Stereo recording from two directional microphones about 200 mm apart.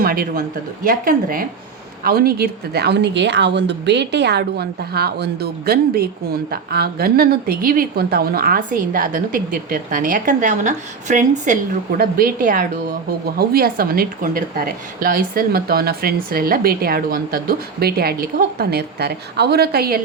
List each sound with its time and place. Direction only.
0.0 s speech: 45° right (ahead or behind)